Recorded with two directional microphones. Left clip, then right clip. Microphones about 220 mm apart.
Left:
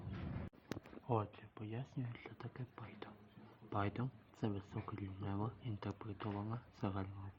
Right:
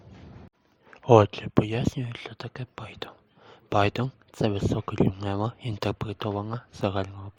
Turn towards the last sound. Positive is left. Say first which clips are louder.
# right 17 dB
turn(degrees=-45)  # may be behind; listen again after turning